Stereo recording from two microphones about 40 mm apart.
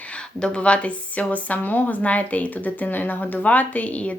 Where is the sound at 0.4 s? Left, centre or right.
Left.